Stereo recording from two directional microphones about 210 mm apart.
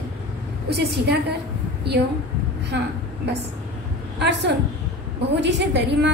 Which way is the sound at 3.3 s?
55° right (ahead or behind).